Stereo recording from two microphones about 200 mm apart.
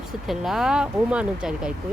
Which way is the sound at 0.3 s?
Centre (ahead or behind).